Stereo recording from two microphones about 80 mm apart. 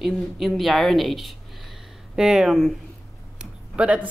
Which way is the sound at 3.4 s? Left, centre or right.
Centre.